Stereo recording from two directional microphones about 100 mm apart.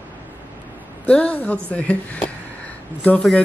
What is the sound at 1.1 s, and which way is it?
Speech, 15° left (ahead or behind).